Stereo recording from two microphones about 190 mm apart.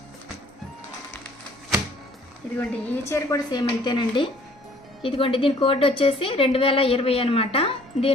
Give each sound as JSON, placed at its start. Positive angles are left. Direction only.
{"t": 2.6, "sound": "a woman's voice", "side_deg": 15}